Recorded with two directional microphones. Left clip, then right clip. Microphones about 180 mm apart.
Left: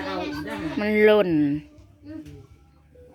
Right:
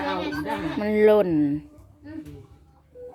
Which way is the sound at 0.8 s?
10° left (ahead or behind).